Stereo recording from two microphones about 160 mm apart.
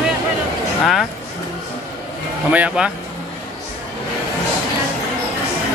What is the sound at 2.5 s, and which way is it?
Speech, 10° right (ahead or behind).